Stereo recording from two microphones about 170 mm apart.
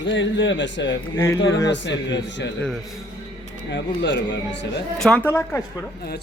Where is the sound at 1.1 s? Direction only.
15° left (ahead or behind).